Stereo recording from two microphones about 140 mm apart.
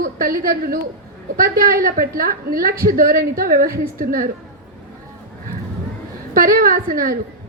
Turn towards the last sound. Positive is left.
turn(degrees=-90)